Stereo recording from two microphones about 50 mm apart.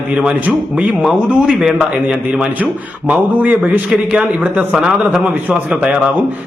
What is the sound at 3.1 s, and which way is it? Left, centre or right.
Speech, right.